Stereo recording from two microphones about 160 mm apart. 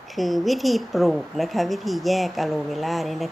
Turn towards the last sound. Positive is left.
turn(degrees=0)  # may be behind; listen again after turning